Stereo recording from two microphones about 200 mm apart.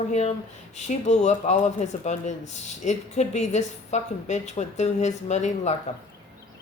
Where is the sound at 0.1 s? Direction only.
35° left (ahead or behind).